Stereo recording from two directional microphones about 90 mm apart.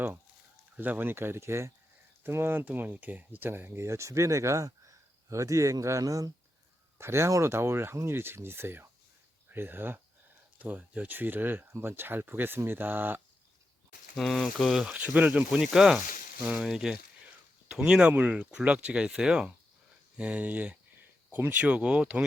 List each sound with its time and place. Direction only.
0.8 s speech: 20° right (ahead or behind)
14.2 s speech: 5° left (ahead or behind)
14.8 s speech: 15° right (ahead or behind)
15.5 s speech: 5° right (ahead or behind)